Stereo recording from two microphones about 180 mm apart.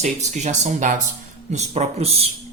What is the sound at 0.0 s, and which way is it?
Speech, 40° right (ahead or behind).